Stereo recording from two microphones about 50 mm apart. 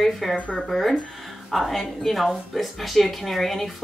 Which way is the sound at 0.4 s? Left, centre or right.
Left.